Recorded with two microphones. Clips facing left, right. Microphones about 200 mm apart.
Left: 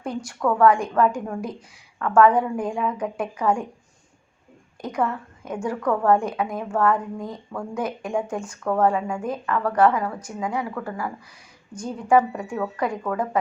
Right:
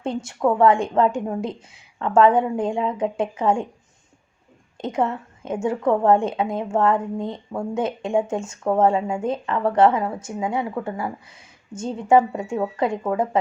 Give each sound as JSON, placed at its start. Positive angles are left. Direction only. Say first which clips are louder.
{"t": 0.0, "sound": "a woman's voice", "louder": "right 3 dB", "side_deg": -25}
{"t": 4.8, "sound": "a woman's voice", "louder": "right 2 dB", "side_deg": -25}